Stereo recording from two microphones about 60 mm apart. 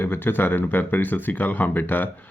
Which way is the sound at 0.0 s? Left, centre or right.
Left.